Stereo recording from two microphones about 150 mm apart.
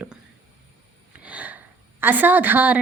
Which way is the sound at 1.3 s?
10° right (ahead or behind).